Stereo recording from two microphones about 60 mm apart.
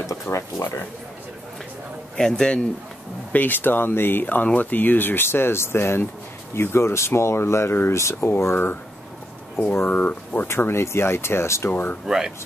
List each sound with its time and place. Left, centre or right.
0.0 s speech: left
2.1 s a man's voice: centre
3.3 s speech: left
9.8 s speech: left
10.5 s speech: left
11.7 s speech: left